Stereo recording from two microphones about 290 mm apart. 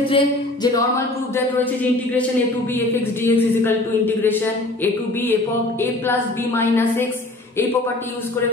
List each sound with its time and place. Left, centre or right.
0.1 s speech: centre
3.3 s speech: centre
4.8 s speech: centre